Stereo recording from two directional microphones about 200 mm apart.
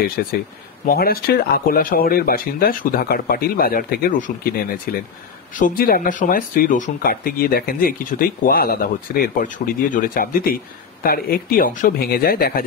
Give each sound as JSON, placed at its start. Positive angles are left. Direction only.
{"t": 0.2, "sound": "speech", "side_deg": 50}